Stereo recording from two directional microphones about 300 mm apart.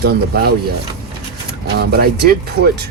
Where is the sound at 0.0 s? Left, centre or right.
Right.